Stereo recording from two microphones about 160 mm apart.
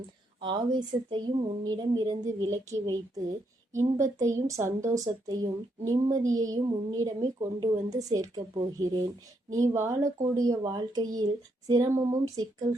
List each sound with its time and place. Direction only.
0.4 s a woman's voice: 30° right (ahead or behind)